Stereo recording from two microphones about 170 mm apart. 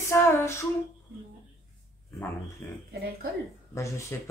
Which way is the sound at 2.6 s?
10° left (ahead or behind).